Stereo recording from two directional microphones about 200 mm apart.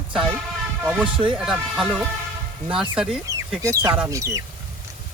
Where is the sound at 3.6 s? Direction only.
15° right (ahead or behind).